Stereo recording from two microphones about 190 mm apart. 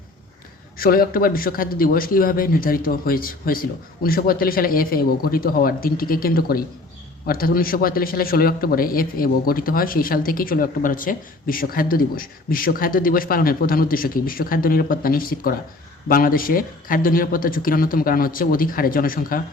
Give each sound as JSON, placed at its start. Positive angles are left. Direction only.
{"t": 0.8, "sound": "a man's voice", "side_deg": 50}